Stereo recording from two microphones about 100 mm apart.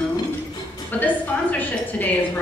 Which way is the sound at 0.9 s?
15° left (ahead or behind).